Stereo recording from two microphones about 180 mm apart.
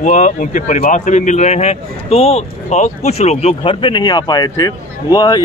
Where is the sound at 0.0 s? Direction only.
45° left (ahead or behind).